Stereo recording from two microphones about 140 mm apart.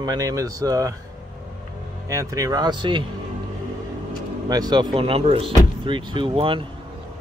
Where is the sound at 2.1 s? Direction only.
25° right (ahead or behind).